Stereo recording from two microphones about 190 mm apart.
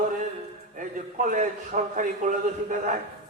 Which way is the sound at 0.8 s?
45° right (ahead or behind).